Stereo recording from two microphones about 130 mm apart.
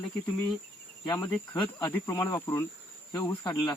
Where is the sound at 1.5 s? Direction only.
30° left (ahead or behind).